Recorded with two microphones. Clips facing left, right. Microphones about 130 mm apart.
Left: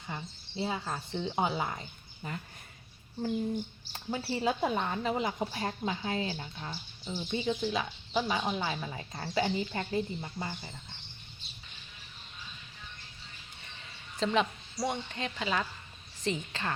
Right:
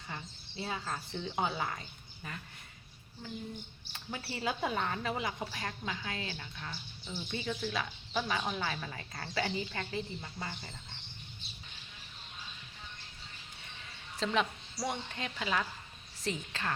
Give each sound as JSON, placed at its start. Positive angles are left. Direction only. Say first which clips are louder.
{"t": 0.5, "sound": "a woman's voice", "louder": "left 4 dB", "side_deg": 20}
{"t": 3.2, "sound": "speech", "louder": "left 11 dB", "side_deg": 40}
{"t": 4.2, "sound": "a woman's voice", "louder": "left 5 dB", "side_deg": 25}
{"t": 6.7, "sound": "a woman's voice", "louder": "left 3 dB", "side_deg": 15}
{"t": 14.2, "sound": "speech", "louder": "left 3 dB", "side_deg": 0}